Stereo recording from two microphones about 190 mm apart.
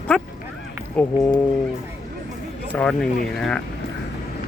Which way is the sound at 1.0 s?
5° left (ahead or behind).